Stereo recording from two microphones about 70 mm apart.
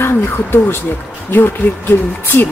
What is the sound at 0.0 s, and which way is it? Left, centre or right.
Speech, left.